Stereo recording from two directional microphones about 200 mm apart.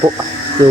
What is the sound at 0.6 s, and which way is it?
Speech, 15° right (ahead or behind).